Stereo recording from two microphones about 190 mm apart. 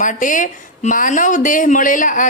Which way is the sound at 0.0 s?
45° left (ahead or behind).